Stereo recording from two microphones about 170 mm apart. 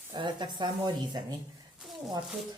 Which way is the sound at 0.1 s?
25° right (ahead or behind).